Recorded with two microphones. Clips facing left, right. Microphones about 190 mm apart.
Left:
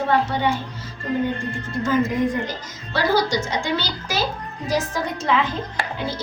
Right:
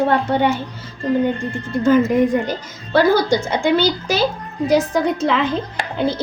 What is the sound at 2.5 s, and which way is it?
A woman's voice, 55° right (ahead or behind).